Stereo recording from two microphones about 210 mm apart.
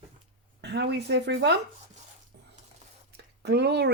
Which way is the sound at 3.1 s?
50° right (ahead or behind).